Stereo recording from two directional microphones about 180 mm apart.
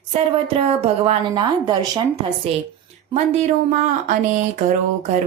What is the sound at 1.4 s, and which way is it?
Speech, 25° right (ahead or behind).